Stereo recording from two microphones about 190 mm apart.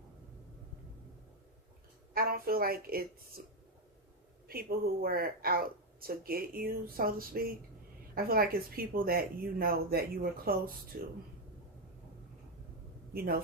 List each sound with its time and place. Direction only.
2.1 s speech: 50° right (ahead or behind)
4.4 s speech: 50° right (ahead or behind)
13.1 s speech: 50° right (ahead or behind)